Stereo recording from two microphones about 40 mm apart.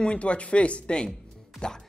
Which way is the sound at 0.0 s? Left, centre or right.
Left.